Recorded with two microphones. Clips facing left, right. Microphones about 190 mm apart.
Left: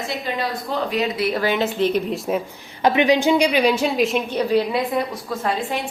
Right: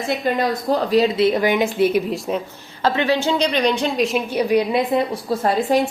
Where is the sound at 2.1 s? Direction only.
5° left (ahead or behind).